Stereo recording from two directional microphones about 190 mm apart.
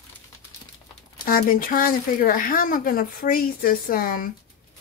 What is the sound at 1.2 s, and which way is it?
Speech, 50° left (ahead or behind).